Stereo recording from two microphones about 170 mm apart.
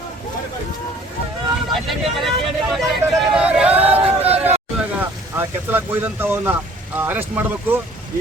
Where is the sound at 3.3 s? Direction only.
5° right (ahead or behind).